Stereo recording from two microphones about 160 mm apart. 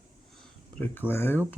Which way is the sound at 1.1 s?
15° left (ahead or behind).